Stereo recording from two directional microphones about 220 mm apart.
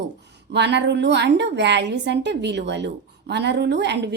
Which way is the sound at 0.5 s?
50° right (ahead or behind).